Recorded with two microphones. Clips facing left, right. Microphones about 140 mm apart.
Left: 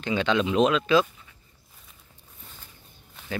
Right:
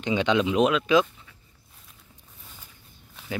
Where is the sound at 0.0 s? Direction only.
15° right (ahead or behind).